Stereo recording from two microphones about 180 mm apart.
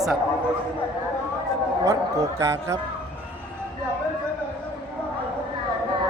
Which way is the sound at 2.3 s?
15° right (ahead or behind).